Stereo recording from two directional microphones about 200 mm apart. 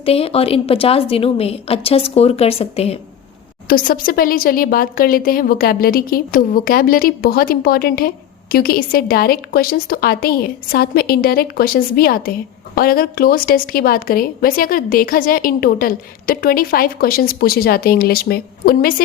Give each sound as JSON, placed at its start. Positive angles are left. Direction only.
{"t": 0.0, "sound": "a woman's voice", "side_deg": 30}
{"t": 3.7, "sound": "a woman's voice", "side_deg": 45}